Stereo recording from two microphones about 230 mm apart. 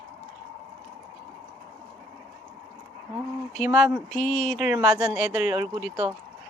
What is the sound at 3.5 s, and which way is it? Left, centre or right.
Speech, centre.